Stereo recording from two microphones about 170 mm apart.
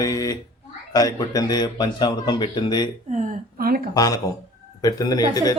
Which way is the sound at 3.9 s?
20° left (ahead or behind).